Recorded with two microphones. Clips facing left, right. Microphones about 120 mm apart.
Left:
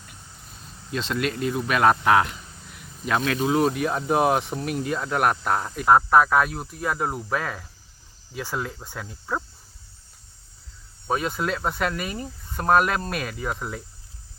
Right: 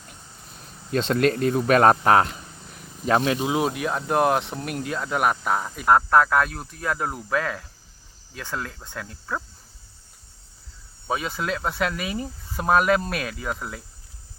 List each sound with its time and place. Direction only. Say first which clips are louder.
0.9 s speech: right 6 dB; 45° right (ahead or behind); by 3.3 s 30° right (ahead or behind)
3.4 s speech: left 2 dB; 5° right (ahead or behind)
8.3 s cricket: left 2 dB; 5° left (ahead or behind)
11.1 s speech: left 1 dB; centre (ahead or behind)